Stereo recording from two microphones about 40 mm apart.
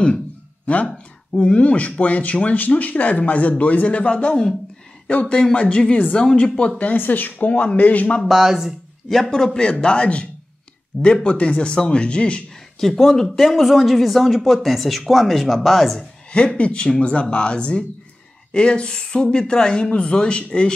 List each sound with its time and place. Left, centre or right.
0.8 s speech: left
6.3 s speech: left
7.0 s speech: left
8.3 s speech: centre
9.1 s a man's voice: centre
9.7 s speech: left
12.8 s a man's voice: centre
13.4 s speech: centre
16.3 s speech: left